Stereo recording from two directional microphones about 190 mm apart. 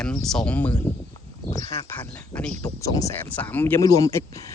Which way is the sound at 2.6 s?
20° left (ahead or behind).